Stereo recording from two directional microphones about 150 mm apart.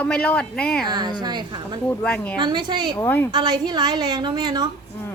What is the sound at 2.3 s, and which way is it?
Speech, 30° right (ahead or behind).